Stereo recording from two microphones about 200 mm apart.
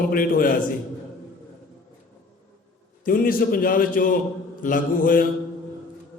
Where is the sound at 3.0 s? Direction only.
45° left (ahead or behind).